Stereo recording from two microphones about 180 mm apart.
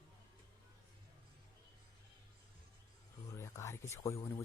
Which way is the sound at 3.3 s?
15° left (ahead or behind).